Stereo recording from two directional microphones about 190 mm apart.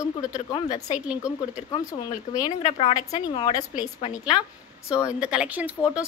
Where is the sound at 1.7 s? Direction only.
20° left (ahead or behind).